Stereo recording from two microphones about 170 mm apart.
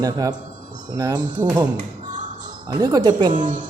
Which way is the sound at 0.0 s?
20° right (ahead or behind).